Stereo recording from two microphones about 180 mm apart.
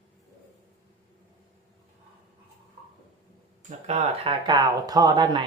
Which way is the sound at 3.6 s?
35° right (ahead or behind).